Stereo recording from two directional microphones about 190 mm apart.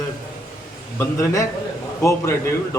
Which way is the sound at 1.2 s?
15° left (ahead or behind).